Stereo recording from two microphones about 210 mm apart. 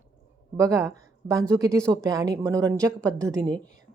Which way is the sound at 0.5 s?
15° right (ahead or behind).